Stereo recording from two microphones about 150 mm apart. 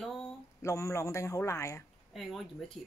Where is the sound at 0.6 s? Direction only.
20° left (ahead or behind).